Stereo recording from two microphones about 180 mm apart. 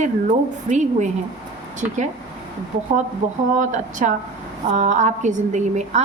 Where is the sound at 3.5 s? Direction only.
45° right (ahead or behind).